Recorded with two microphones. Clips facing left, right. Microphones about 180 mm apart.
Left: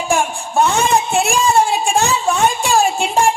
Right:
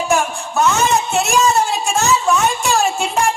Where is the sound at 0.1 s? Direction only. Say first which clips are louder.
Left 3 dB; 30° left (ahead or behind).